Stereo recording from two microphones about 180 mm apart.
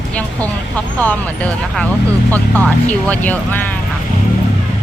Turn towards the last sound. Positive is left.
turn(degrees=10)  # may be behind; listen again after turning